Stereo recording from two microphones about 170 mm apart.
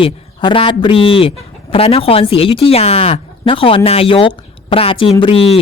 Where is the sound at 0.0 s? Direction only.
30° left (ahead or behind).